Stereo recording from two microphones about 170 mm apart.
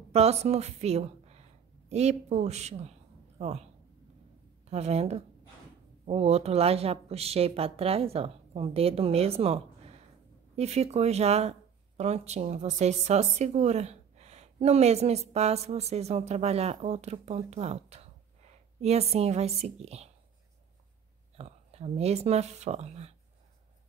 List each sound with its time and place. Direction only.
0.1 s a woman's voice: 40° right (ahead or behind)
4.6 s a woman's voice: 40° right (ahead or behind)
21.4 s a woman's voice: 40° right (ahead or behind)